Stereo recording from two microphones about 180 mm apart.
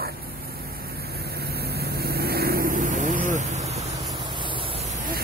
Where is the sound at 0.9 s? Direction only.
60° right (ahead or behind); by 4.0 s 35° right (ahead or behind).